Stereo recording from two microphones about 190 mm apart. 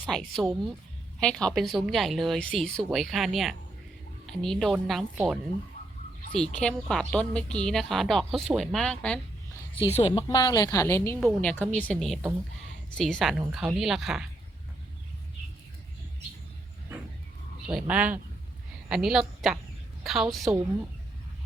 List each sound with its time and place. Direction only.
0.0 s speech: 5° left (ahead or behind)
6.3 s speech: 5° left (ahead or behind)
10.1 s a woman's voice: 20° left (ahead or behind)
11.2 s speech: 5° left (ahead or behind)
17.7 s speech: 5° right (ahead or behind)